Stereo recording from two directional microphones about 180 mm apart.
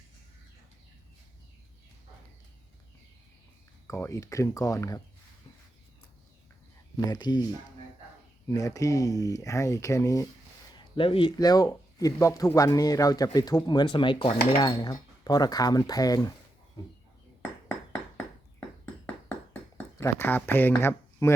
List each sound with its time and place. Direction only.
3.8 s speech: 15° left (ahead or behind)
7.1 s speech: 25° left (ahead or behind)
8.4 s speech: 20° left (ahead or behind)
10.9 s speech: 30° left (ahead or behind)
20.0 s speech: 10° left (ahead or behind)